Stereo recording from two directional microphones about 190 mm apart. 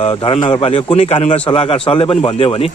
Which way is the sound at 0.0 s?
25° left (ahead or behind).